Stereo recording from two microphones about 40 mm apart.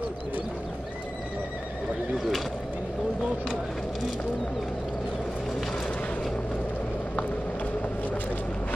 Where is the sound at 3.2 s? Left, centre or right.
Right.